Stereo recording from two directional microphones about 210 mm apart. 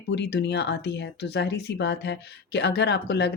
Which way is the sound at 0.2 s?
55° left (ahead or behind).